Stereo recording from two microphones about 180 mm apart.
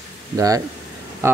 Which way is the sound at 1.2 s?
15° right (ahead or behind).